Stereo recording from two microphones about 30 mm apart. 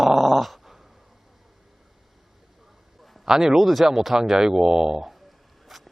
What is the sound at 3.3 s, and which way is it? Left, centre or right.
Speech, centre.